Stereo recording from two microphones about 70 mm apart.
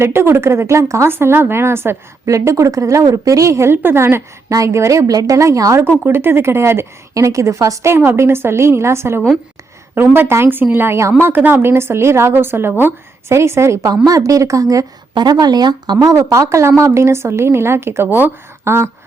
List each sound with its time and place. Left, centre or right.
0.0 s speech: right
2.2 s a woman's voice: right
6.1 s speech: right
7.1 s a woman's voice: right
7.9 s speech: right
14.0 s a woman's voice: right
15.1 s speech: right